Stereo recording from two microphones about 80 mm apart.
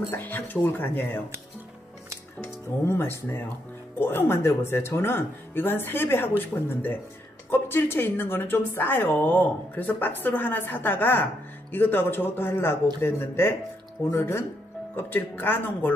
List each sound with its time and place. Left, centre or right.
0.1 s a woman's voice: left
2.4 s a woman's voice: left